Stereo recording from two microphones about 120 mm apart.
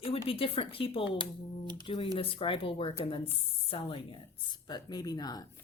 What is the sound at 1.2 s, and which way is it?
Speech, 40° right (ahead or behind).